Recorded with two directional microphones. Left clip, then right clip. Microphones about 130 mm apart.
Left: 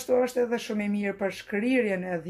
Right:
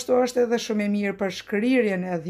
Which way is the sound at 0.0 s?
30° right (ahead or behind).